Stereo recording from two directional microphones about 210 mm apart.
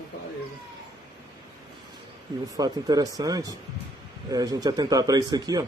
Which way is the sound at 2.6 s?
20° right (ahead or behind).